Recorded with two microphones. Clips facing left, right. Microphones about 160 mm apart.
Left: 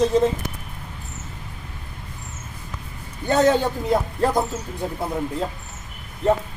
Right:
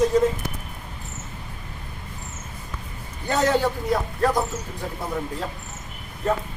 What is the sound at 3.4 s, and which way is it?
A man's voice, 20° left (ahead or behind).